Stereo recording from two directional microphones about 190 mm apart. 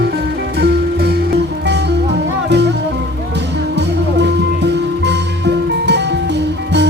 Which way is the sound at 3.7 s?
65° right (ahead or behind).